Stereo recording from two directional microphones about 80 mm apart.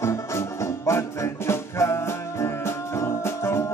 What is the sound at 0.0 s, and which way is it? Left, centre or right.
Music, left.